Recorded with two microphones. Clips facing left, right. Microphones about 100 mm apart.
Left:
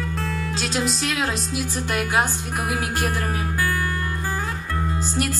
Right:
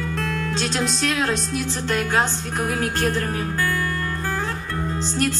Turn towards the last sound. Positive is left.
turn(degrees=10)  # may be behind; listen again after turning